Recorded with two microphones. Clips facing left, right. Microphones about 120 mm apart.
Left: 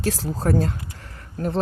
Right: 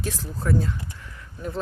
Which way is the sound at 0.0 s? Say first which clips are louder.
Left 6 dB; 90° left.